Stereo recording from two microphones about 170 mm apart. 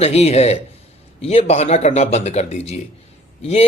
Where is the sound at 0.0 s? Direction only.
40° left (ahead or behind).